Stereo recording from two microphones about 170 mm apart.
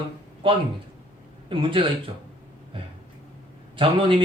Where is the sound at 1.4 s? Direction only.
30° right (ahead or behind).